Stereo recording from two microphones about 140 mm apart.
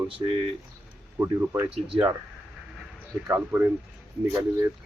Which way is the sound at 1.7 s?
40° right (ahead or behind).